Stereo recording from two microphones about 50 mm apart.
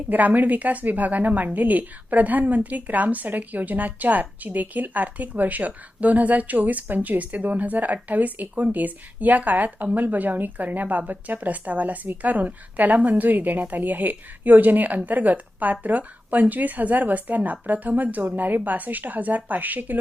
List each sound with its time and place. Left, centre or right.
0.1 s speech: right